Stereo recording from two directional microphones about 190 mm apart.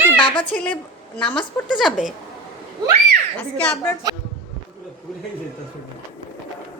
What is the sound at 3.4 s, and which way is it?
Speech, 10° left (ahead or behind).